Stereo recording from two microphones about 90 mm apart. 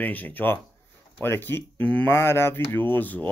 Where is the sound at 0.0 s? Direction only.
20° left (ahead or behind).